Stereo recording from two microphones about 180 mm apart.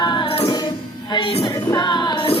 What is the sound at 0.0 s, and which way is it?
Music, 25° left (ahead or behind).